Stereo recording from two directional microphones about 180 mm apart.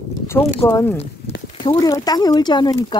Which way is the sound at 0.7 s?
15° left (ahead or behind).